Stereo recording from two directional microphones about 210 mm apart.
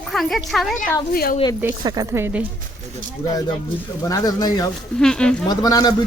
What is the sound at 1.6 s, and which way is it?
Speech, 20° right (ahead or behind).